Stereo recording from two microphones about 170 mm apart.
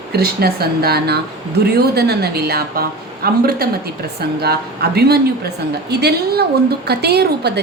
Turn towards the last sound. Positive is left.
turn(degrees=-70)  # may be behind; listen again after turning